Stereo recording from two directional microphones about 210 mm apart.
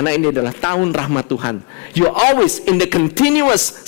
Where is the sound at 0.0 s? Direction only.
15° left (ahead or behind).